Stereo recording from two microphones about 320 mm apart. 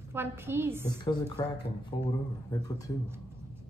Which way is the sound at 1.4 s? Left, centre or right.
Centre.